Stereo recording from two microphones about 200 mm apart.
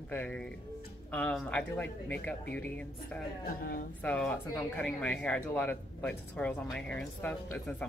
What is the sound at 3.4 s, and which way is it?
Speech, 45° left (ahead or behind).